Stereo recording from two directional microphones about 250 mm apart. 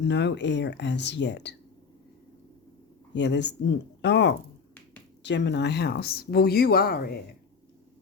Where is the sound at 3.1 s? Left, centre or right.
Left.